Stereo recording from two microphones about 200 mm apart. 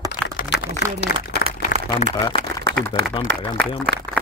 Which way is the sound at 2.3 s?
25° left (ahead or behind).